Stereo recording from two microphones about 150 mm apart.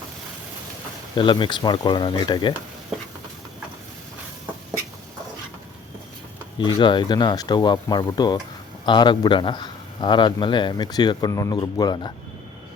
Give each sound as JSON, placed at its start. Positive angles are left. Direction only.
{"t": 1.1, "sound": "speech", "side_deg": 35}
{"t": 6.6, "sound": "a man's voice", "side_deg": 30}